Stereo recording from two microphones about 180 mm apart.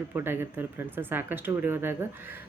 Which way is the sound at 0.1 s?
10° right (ahead or behind).